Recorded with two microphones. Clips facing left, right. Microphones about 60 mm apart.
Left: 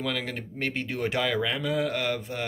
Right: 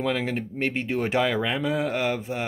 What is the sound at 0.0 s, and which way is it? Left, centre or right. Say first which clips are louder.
Speech: right 5 dB; right.